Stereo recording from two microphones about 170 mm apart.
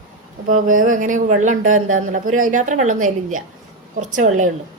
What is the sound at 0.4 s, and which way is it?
Speech, 50° right (ahead or behind).